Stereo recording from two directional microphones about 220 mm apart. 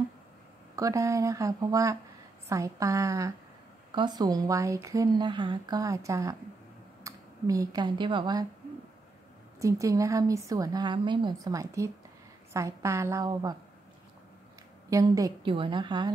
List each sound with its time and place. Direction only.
0.7 s speech: 15° right (ahead or behind)
9.6 s speech: 15° right (ahead or behind)
14.9 s a woman's voice: 15° right (ahead or behind)